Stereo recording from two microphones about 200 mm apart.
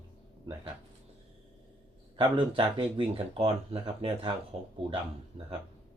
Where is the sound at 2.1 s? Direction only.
25° right (ahead or behind).